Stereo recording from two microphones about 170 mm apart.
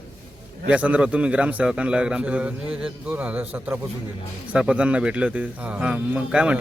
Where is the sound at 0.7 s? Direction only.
10° right (ahead or behind).